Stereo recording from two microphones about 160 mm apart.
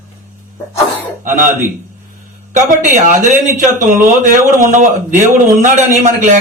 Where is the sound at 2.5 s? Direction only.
55° right (ahead or behind).